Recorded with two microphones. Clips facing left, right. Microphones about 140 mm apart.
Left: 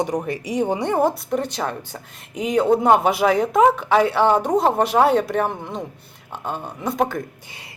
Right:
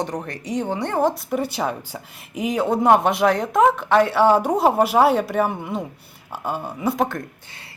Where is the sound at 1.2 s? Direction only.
5° right (ahead or behind).